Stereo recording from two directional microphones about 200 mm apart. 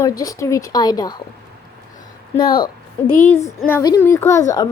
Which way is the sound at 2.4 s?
25° left (ahead or behind).